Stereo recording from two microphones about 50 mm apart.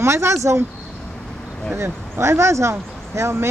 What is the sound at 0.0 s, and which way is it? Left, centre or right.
Speech, right.